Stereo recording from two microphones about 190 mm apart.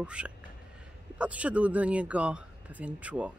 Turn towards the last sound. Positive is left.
turn(degrees=-5)  # may be behind; listen again after turning